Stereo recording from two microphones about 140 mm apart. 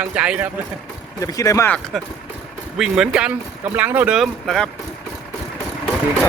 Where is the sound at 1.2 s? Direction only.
25° left (ahead or behind).